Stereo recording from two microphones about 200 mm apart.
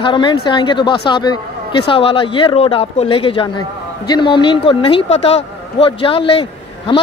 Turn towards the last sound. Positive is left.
turn(degrees=25)  # may be behind; listen again after turning